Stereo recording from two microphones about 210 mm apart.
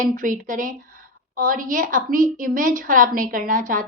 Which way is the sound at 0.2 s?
40° right (ahead or behind).